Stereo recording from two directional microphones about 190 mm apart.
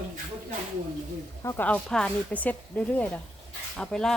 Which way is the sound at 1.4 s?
15° left (ahead or behind).